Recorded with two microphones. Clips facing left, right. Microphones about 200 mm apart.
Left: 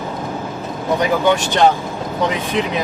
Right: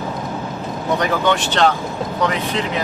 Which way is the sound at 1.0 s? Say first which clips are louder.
Left 3 dB; 10° left (ahead or behind).